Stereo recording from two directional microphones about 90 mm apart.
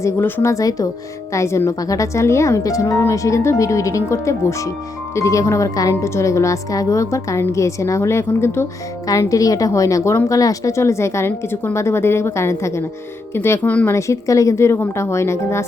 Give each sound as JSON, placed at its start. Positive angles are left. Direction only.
{"t": 0.0, "sound": "speech", "side_deg": 25}
{"t": 0.5, "sound": "a woman's voice", "side_deg": 40}
{"t": 9.0, "sound": "a woman's voice", "side_deg": 40}
{"t": 13.9, "sound": "a woman's voice", "side_deg": 35}